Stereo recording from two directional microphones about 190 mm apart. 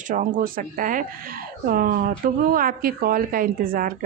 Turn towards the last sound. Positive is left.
turn(degrees=-50)  # may be behind; listen again after turning